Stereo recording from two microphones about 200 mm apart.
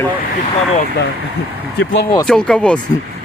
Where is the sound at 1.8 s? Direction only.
60° left (ahead or behind).